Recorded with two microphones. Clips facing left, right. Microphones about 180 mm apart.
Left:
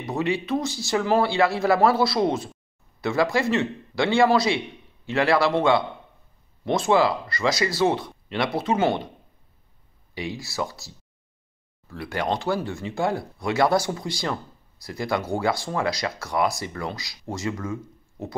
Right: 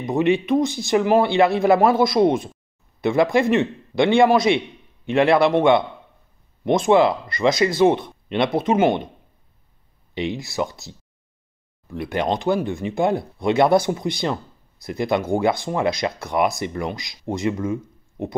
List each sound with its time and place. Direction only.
0.0 s speech: 20° right (ahead or behind)
10.1 s speech: 20° right (ahead or behind)